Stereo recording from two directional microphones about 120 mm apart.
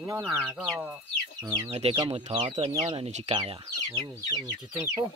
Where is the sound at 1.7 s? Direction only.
55° right (ahead or behind).